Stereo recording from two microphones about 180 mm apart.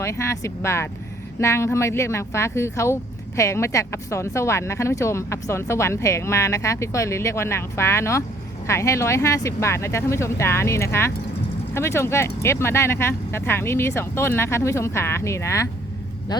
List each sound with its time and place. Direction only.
0.0 s speech: 15° left (ahead or behind)